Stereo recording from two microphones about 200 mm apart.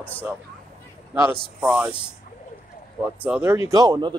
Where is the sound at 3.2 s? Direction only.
10° right (ahead or behind).